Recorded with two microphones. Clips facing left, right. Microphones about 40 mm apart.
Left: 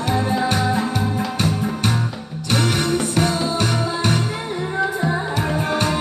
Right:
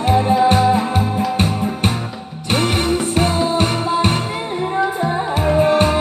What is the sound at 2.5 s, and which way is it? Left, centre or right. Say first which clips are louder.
Music: right 2 dB; right.